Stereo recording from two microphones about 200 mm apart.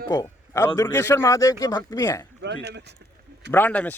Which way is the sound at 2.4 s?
60° right (ahead or behind).